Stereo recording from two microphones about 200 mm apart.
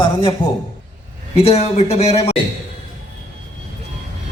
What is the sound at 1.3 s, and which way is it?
Speech, 30° left (ahead or behind).